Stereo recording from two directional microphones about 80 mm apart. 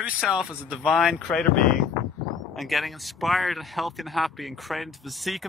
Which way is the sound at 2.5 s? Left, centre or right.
Centre.